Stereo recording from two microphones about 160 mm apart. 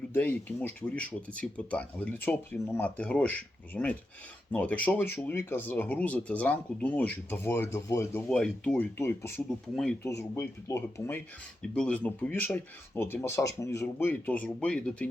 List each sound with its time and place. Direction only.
0.1 s speech: 10° left (ahead or behind)
8.3 s speech: 5° left (ahead or behind)